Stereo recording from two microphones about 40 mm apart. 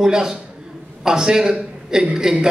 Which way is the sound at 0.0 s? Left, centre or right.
Centre.